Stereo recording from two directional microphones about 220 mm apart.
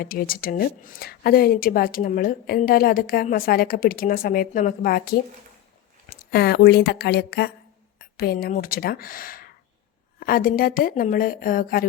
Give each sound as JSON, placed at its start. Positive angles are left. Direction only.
{"t": 0.0, "sound": "a woman's voice", "side_deg": 40}
{"t": 6.3, "sound": "a woman's voice", "side_deg": 45}